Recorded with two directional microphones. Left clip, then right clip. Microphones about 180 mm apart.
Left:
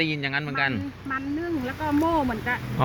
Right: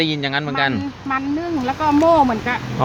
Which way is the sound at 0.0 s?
20° right (ahead or behind).